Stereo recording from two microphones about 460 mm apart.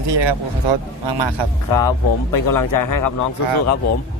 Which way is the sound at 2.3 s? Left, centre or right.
Left.